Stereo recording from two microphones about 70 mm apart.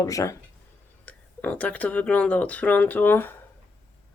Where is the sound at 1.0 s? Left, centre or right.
Left.